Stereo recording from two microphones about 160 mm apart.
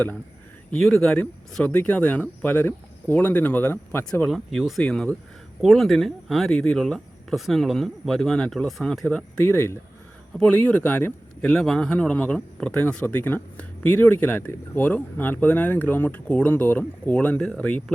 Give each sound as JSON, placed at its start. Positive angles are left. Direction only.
{"t": 0.7, "sound": "a man's voice", "side_deg": 0}